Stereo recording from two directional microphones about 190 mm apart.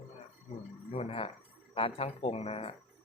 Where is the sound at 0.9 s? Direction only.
30° left (ahead or behind).